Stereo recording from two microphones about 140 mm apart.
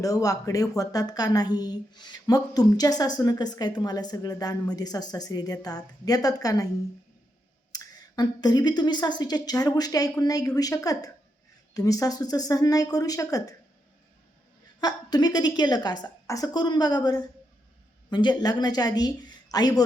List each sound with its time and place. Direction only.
0.0 s a woman's voice: 25° left (ahead or behind)
7.7 s a woman's voice: 30° left (ahead or behind)
14.8 s a woman's voice: 30° left (ahead or behind)